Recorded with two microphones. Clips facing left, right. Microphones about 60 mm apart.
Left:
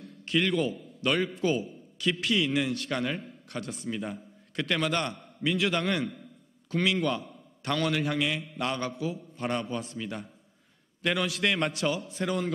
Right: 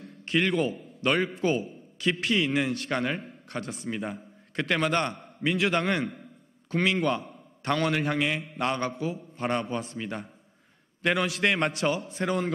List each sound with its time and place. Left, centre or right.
0.2 s a man's voice: right